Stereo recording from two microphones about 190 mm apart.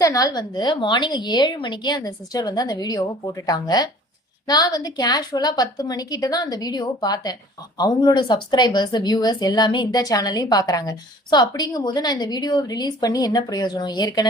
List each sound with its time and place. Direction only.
0.0 s a woman's voice: 15° left (ahead or behind)